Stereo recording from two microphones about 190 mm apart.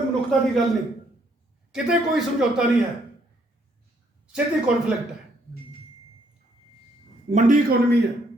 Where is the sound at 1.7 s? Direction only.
5° right (ahead or behind).